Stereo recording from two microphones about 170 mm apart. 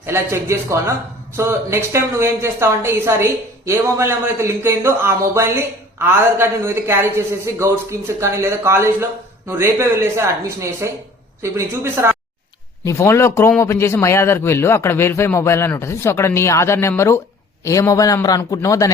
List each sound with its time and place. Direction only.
0.0 s a woman's voice: 15° right (ahead or behind)
12.8 s a man's voice: 15° left (ahead or behind)